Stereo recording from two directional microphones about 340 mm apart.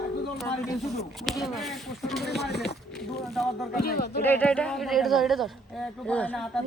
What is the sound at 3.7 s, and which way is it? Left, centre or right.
Speech, left.